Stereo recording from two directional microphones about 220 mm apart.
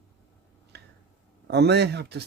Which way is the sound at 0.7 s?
50° right (ahead or behind).